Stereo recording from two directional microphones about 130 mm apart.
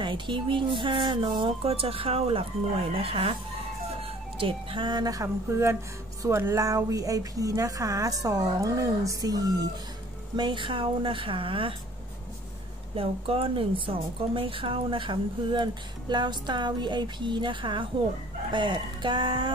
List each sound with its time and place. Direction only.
0.0 s a woman's voice: 40° right (ahead or behind)
4.4 s a woman's voice: 45° right (ahead or behind)
12.9 s a woman's voice: 45° right (ahead or behind)